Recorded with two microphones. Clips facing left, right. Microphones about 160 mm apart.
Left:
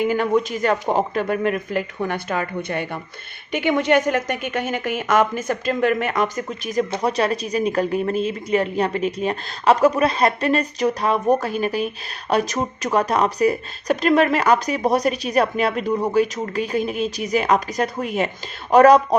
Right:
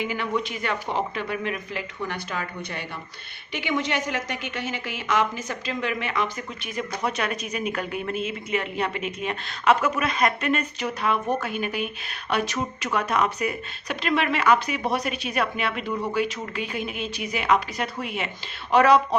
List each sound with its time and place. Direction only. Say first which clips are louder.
0.0 s a woman's voice: left 8 dB; 45° left (ahead or behind)